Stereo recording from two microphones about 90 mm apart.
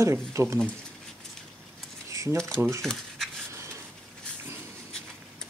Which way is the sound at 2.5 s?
35° right (ahead or behind).